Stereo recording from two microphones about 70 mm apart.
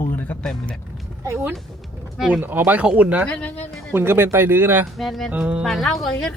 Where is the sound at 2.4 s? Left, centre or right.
Right.